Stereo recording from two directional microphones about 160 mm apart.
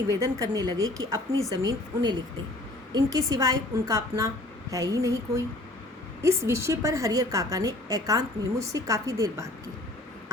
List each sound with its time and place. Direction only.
0.1 s a woman's voice: 20° right (ahead or behind)